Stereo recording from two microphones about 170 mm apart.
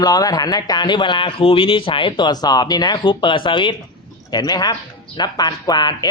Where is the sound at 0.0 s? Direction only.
20° left (ahead or behind).